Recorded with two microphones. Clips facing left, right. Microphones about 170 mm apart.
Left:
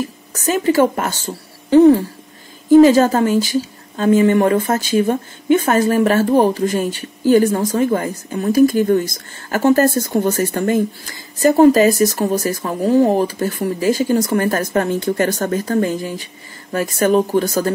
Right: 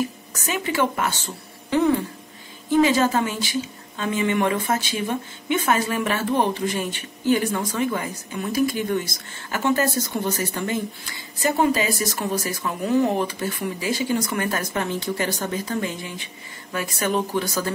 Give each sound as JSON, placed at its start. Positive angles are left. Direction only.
{"t": 0.3, "sound": "a woman's voice", "side_deg": 40}